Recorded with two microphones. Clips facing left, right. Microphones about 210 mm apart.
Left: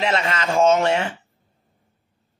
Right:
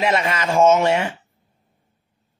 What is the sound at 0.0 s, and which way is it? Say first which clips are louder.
A man's voice: right 2 dB; 10° right (ahead or behind).